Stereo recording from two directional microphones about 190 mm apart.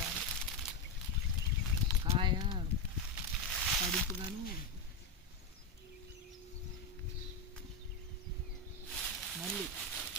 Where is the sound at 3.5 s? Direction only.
Centre (ahead or behind).